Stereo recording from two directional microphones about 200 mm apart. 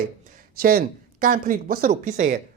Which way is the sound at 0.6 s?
45° right (ahead or behind).